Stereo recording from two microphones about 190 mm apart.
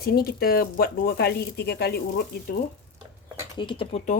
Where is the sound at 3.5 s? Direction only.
25° left (ahead or behind).